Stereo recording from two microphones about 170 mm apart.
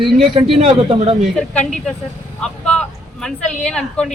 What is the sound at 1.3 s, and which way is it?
Speech, 5° left (ahead or behind).